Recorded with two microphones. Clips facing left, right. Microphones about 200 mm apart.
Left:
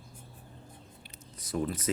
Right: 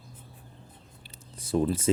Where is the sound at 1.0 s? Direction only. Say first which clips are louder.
Right 8 dB; 30° right (ahead or behind).